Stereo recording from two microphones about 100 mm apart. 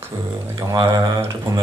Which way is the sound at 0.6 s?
40° right (ahead or behind).